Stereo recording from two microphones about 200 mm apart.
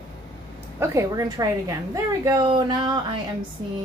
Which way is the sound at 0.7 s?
15° right (ahead or behind).